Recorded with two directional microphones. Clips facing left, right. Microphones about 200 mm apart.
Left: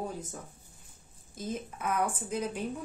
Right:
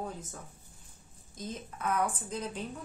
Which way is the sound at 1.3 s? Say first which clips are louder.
Left 4 dB; 10° left (ahead or behind).